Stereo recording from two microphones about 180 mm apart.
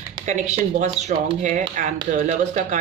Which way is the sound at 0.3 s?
40° right (ahead or behind).